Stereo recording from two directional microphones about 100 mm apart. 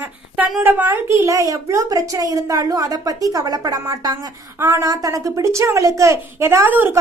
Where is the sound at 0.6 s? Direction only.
20° right (ahead or behind).